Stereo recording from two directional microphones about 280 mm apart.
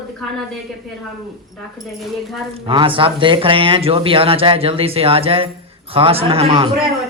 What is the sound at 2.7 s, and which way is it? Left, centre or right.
A man's voice, centre.